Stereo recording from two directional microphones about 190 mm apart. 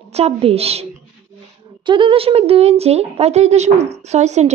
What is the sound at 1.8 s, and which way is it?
A woman's voice, 25° right (ahead or behind).